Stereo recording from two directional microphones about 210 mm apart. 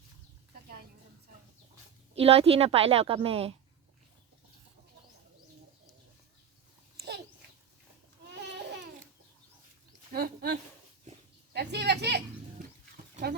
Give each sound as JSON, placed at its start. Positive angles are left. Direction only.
{"t": 2.1, "sound": "a woman's voice", "side_deg": -25}
{"t": 8.3, "sound": "babbling", "side_deg": -55}
{"t": 10.1, "sound": "a sound", "side_deg": -45}